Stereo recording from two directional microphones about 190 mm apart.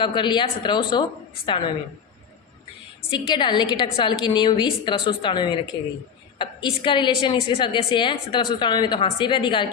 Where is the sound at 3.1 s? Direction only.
25° left (ahead or behind).